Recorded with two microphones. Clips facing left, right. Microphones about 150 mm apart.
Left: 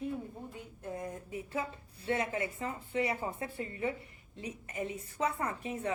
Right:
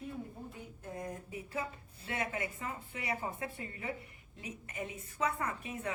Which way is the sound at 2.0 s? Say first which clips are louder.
Left 5 dB; 30° left (ahead or behind).